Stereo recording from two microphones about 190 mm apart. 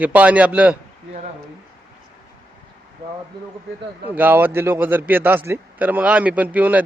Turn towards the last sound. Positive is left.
turn(degrees=-10)  # may be behind; listen again after turning